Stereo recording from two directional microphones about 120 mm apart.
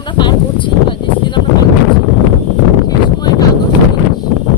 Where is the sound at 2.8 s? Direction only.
35° left (ahead or behind).